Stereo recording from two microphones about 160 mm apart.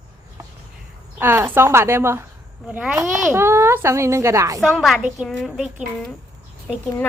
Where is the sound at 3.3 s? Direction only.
15° right (ahead or behind).